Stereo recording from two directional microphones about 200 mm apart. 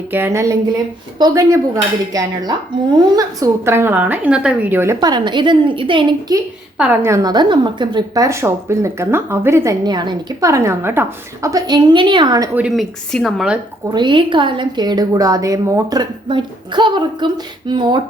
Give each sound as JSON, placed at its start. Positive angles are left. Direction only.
{"t": 0.1, "sound": "a woman's voice", "side_deg": -10}
{"t": 6.7, "sound": "a woman's voice", "side_deg": -10}
{"t": 12.5, "sound": "speech", "side_deg": -5}
{"t": 13.9, "sound": "a woman's voice", "side_deg": -25}